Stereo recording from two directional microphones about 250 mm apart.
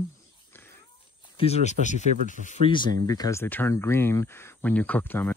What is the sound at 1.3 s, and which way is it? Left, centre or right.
Speech, left.